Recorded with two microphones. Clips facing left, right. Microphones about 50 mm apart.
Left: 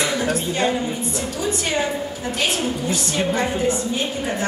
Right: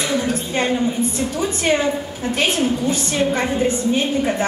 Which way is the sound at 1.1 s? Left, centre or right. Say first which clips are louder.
Right 2 dB; right.